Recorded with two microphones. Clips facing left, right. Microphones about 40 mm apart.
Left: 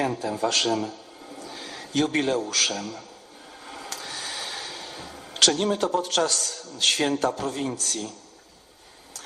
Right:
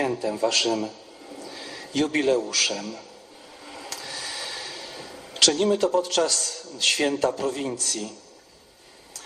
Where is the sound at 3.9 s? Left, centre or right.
Left.